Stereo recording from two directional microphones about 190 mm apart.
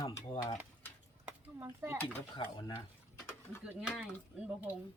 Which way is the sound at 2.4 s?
25° left (ahead or behind).